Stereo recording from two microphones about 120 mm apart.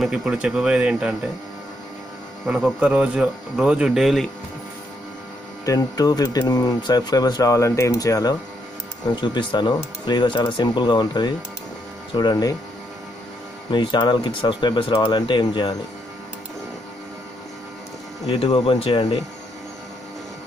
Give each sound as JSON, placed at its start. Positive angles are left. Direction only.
{"t": 0.0, "sound": "speech", "side_deg": -5}
{"t": 2.4, "sound": "speech", "side_deg": -10}
{"t": 5.7, "sound": "speech", "side_deg": 30}
{"t": 13.7, "sound": "speech", "side_deg": 40}
{"t": 18.2, "sound": "speech", "side_deg": 55}